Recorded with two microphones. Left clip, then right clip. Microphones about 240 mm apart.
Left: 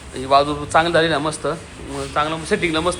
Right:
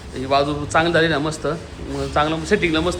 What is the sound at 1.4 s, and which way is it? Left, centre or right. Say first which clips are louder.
Speech: even; centre.